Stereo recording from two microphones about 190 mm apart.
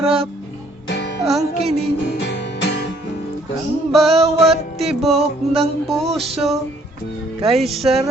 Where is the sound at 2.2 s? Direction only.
65° left (ahead or behind).